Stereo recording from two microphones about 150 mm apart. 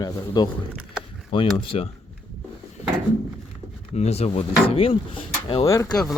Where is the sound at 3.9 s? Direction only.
45° left (ahead or behind).